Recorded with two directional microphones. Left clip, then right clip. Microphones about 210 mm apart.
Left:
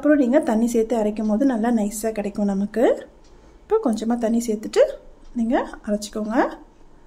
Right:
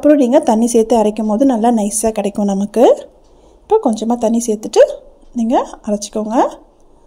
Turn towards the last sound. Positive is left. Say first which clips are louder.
# right 7 dB
turn(degrees=-25)  # may be behind; listen again after turning